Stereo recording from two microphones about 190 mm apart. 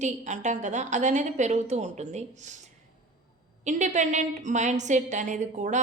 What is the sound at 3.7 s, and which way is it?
A woman's voice, 40° right (ahead or behind).